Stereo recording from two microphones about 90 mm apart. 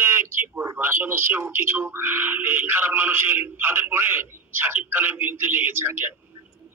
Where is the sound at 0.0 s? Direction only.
25° right (ahead or behind).